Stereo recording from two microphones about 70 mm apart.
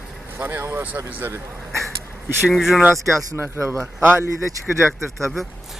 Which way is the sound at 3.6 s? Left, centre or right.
Right.